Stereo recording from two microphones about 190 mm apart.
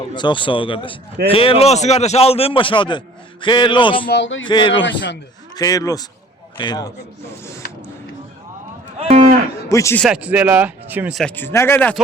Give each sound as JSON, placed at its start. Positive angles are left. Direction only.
{"t": 0.1, "sound": "a man's voice", "side_deg": 25}
{"t": 4.1, "sound": "speech", "side_deg": 80}
{"t": 4.4, "sound": "a man's voice", "side_deg": 25}
{"t": 4.8, "sound": "a man's voice", "side_deg": 70}
{"t": 5.5, "sound": "a man's voice", "side_deg": 20}
{"t": 9.0, "sound": "cattle", "side_deg": -35}
{"t": 9.6, "sound": "speech", "side_deg": 15}
{"t": 10.0, "sound": "speech", "side_deg": -5}
{"t": 11.2, "sound": "speech", "side_deg": 10}